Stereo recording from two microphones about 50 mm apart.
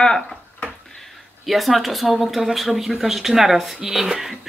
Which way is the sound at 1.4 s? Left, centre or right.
Centre.